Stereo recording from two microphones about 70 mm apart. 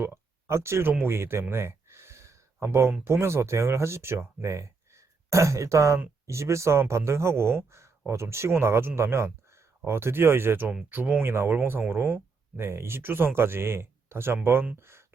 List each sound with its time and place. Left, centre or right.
0.0 s a sound: right
3.0 s speech: right
10.8 s speech: right
11.2 s speech: right